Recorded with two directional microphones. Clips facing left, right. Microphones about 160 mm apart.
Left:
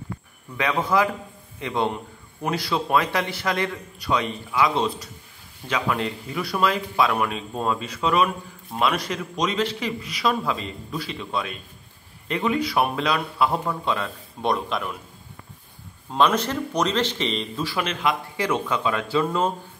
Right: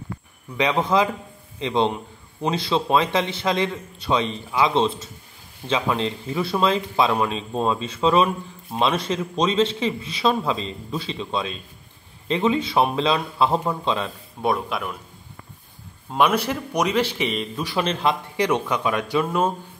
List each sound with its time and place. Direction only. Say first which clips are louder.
0.6 s a man's voice: right 2 dB; 20° right (ahead or behind)
14.4 s speech: right 1 dB; 5° right (ahead or behind)
16.1 s a man's voice: right 1 dB; 10° right (ahead or behind)
17.6 s a man's voice: right 3 dB; 25° right (ahead or behind)
18.4 s a man's voice: right 3 dB; 15° right (ahead or behind)